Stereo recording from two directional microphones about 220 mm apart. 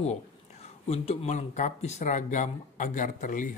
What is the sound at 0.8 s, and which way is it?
Speech, 30° left (ahead or behind).